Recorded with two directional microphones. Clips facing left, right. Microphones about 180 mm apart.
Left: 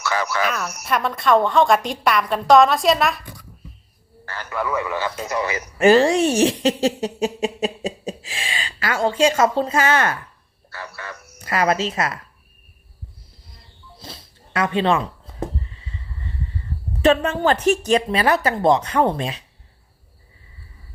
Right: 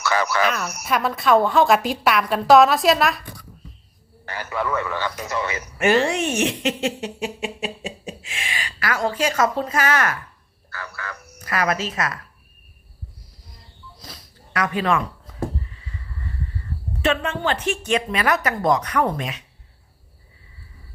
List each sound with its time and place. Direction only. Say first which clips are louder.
0.0 s speech: right 2 dB; 65° right (ahead or behind)
0.4 s a woman's voice: right 1 dB; centre (ahead or behind)
4.4 s a man's voice: left 1 dB; 5° left (ahead or behind)
5.1 s speech: left 2 dB; 25° left (ahead or behind)
10.8 s a sound: even; 25° left (ahead or behind)
14.0 s a sound: left 5 dB; 25° left (ahead or behind)
17.0 s speech: left 5 dB; 40° left (ahead or behind)